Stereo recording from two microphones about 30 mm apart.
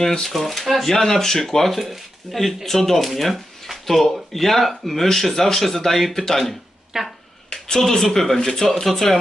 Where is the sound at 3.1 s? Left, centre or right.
Centre.